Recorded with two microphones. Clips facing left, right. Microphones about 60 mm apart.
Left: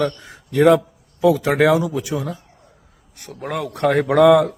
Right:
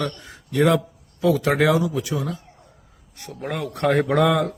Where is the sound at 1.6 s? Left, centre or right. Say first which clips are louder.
Left 3 dB; left.